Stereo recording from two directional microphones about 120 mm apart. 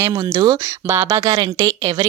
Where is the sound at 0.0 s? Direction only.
20° right (ahead or behind).